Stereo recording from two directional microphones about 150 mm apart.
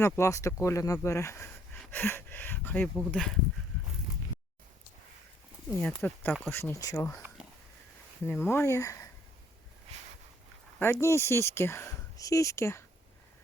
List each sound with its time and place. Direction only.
0.0 s speech: 20° left (ahead or behind); by 3.4 s 5° left (ahead or behind)
5.7 s speech: 10° left (ahead or behind)
8.2 s speech: 15° left (ahead or behind)
10.8 s speech: 15° left (ahead or behind)